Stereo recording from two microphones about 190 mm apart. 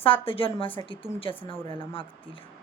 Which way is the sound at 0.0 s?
30° left (ahead or behind).